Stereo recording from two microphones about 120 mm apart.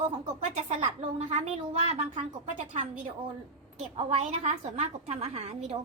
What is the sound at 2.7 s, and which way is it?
Speech, 75° right (ahead or behind).